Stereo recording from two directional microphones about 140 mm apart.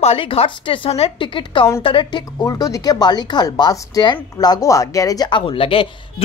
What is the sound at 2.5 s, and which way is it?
Speech, 25° left (ahead or behind).